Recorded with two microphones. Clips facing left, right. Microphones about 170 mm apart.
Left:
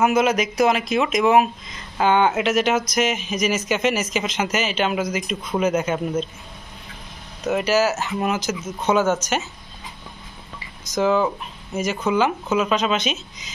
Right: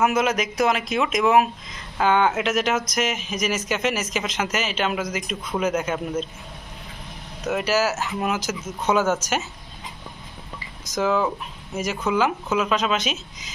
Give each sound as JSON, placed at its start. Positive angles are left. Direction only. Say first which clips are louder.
{"t": 0.0, "sound": "a man's voice", "louder": "left 3 dB", "side_deg": 0}
{"t": 7.4, "sound": "a man's voice", "louder": "left 3 dB", "side_deg": 0}
{"t": 11.0, "sound": "a man's voice", "louder": "left 3 dB", "side_deg": 0}